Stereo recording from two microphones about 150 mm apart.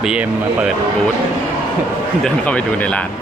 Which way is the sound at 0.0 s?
5° right (ahead or behind).